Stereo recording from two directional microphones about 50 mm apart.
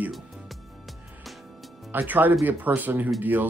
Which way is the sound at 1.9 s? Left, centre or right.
Right.